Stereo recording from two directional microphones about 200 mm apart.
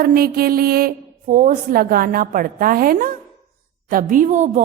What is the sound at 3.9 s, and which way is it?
Speech, 45° right (ahead or behind).